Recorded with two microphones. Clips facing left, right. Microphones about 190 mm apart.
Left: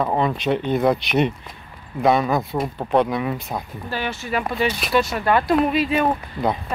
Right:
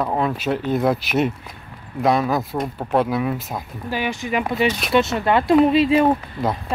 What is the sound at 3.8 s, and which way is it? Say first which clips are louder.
Speech: right 4 dB; 15° right (ahead or behind).